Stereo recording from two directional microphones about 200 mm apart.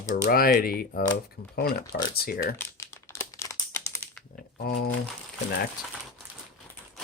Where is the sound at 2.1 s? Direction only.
50° left (ahead or behind).